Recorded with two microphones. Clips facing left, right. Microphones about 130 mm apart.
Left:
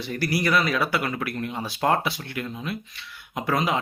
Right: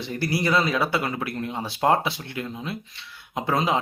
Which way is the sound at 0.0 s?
25° right (ahead or behind).